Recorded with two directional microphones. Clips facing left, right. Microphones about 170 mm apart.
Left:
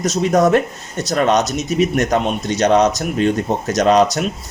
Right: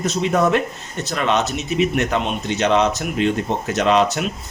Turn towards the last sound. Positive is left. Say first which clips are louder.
# left 3 dB
turn(degrees=40)  # may be behind; listen again after turning